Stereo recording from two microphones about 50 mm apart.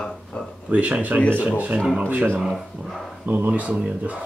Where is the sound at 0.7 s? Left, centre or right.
Right.